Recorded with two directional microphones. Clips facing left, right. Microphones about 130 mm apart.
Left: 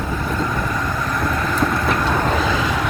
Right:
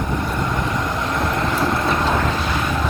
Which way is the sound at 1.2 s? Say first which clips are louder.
Left 1 dB; 25° right (ahead or behind).